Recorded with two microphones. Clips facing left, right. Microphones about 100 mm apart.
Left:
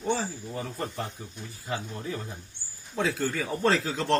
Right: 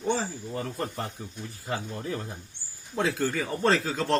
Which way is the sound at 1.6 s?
10° right (ahead or behind).